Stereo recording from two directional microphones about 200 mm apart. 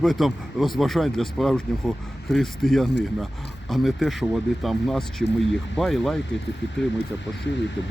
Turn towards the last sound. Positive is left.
turn(degrees=60)  # may be behind; listen again after turning